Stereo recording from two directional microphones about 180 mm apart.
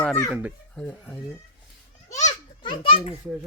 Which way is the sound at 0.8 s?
10° left (ahead or behind).